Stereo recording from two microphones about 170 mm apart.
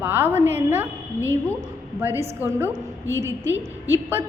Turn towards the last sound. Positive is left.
turn(degrees=-10)  # may be behind; listen again after turning